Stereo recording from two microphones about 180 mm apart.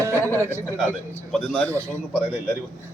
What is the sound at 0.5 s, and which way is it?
A man's voice, 5° left (ahead or behind).